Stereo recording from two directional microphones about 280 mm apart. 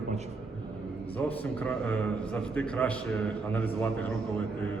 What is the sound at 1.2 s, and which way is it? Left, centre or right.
A man's voice, centre.